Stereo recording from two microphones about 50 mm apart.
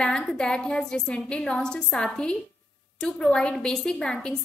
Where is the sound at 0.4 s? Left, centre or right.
Centre.